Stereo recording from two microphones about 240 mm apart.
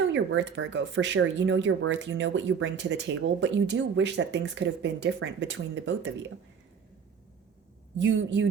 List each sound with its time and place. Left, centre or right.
0.1 s speech: right
7.9 s speech: right